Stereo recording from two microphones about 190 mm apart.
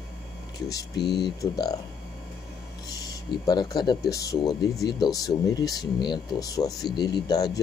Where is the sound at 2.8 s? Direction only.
20° left (ahead or behind).